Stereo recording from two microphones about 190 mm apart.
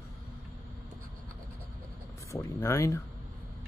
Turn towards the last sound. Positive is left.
turn(degrees=15)  # may be behind; listen again after turning